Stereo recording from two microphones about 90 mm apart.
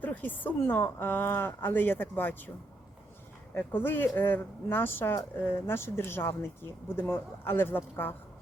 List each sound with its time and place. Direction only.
0.0 s speech: 20° left (ahead or behind)
3.6 s speech: 20° left (ahead or behind)